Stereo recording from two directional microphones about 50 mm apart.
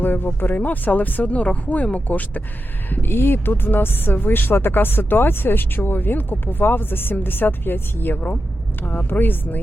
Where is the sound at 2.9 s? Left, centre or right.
Left.